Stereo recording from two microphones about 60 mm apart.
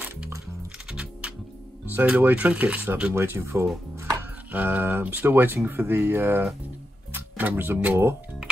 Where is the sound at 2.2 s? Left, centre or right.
Right.